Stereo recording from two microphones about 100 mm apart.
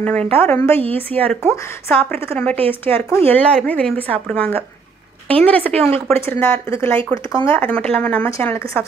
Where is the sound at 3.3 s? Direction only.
15° left (ahead or behind).